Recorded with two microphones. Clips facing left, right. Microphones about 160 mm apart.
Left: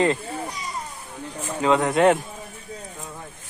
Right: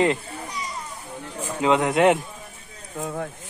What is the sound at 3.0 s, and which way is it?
Speech, 60° right (ahead or behind).